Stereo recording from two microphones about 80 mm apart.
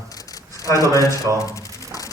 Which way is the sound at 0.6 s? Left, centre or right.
Left.